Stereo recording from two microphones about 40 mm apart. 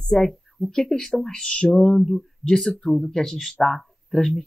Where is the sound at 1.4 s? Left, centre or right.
Left.